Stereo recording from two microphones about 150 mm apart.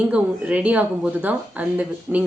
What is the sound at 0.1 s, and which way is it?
A woman's voice, 10° right (ahead or behind).